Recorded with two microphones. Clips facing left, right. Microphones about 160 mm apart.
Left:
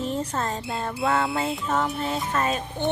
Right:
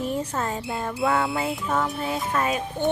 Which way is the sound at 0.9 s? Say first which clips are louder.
Right 1 dB; centre (ahead or behind).